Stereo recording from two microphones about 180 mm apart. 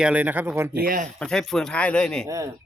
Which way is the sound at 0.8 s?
50° right (ahead or behind).